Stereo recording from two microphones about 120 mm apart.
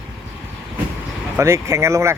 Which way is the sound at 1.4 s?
25° right (ahead or behind).